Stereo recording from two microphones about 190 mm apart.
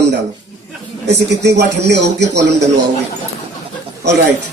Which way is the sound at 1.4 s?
65° right (ahead or behind).